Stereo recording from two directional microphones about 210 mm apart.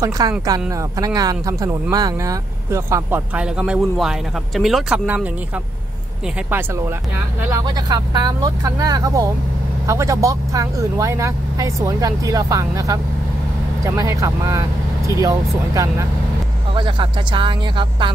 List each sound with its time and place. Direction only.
0.5 s speech: 15° right (ahead or behind)
7.5 s speech: 20° right (ahead or behind)